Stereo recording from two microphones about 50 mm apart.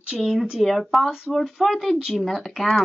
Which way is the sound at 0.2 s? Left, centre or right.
Centre.